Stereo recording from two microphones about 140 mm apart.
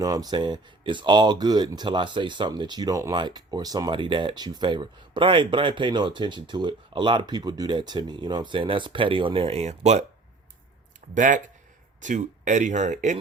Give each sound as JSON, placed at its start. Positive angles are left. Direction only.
{"t": 0.0, "sound": "speech", "side_deg": -25}
{"t": 11.1, "sound": "speech", "side_deg": -65}